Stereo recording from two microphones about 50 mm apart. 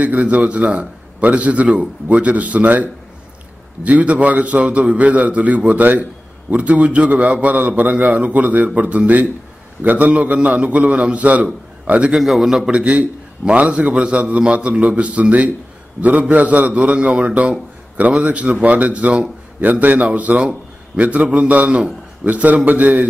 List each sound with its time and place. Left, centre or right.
0.0 s a man's voice: right
12.1 s a man's voice: centre
12.7 s a man's voice: right